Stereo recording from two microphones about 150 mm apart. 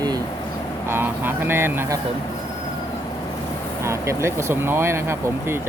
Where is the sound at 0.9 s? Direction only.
15° right (ahead or behind).